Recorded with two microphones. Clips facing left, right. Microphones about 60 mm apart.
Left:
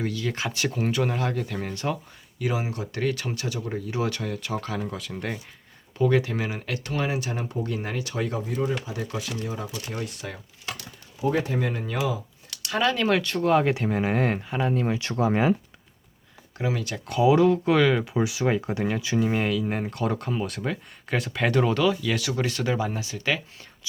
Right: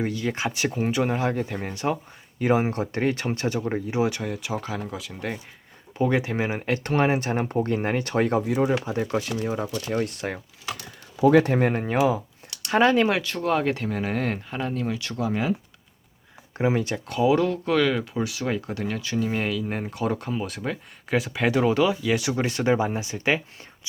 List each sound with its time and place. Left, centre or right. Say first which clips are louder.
0.0 s speech: right 2 dB; right
2.4 s speech: right 6 dB; right; by 5.3 s centre
6.0 s speech: even; right
8.9 s speech: right 6 dB; right
9.8 s speech: right 7 dB; right
11.2 s speech: right 8 dB; right
11.5 s speech: right 5 dB; right
12.6 s speech: right 5 dB; right
13.1 s speech: left 2 dB; centre; by 15.1 s left
15.1 s speech: left 4 dB; left
16.6 s speech: right 5 dB; right
17.1 s speech: left 3 dB; centre; by 23.6 s right